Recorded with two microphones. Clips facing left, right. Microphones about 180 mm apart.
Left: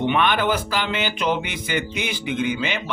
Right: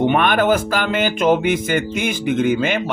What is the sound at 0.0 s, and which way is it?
Speech, 50° right (ahead or behind).